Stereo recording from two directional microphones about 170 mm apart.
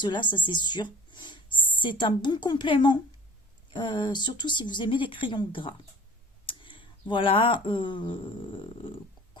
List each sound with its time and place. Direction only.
0.0 s speech: 25° left (ahead or behind)